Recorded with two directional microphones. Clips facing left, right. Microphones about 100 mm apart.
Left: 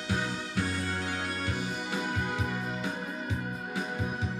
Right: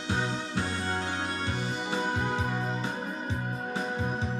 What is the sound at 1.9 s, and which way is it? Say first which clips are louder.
Music: right 4 dB; 30° right (ahead or behind).